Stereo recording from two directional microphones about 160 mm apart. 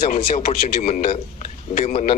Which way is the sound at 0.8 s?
45° left (ahead or behind).